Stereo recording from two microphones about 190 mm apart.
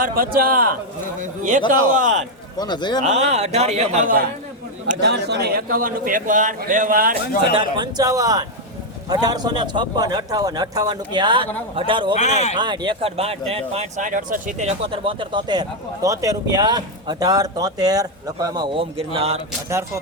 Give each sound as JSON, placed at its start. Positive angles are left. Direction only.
{"t": 0.0, "sound": "a man's voice", "side_deg": -50}
{"t": 2.6, "sound": "speech", "side_deg": 25}
{"t": 3.0, "sound": "a man's voice", "side_deg": -35}
{"t": 4.9, "sound": "a man's voice", "side_deg": -60}
{"t": 7.5, "sound": "speech", "side_deg": -20}
{"t": 12.1, "sound": "speech", "side_deg": 35}
{"t": 12.5, "sound": "speech", "side_deg": -25}